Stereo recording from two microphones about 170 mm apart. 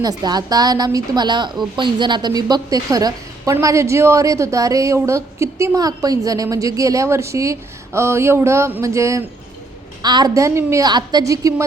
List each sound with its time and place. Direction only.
0.0 s a woman's voice: 25° right (ahead or behind)